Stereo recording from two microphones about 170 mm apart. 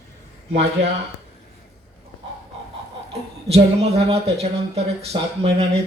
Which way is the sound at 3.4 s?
35° right (ahead or behind).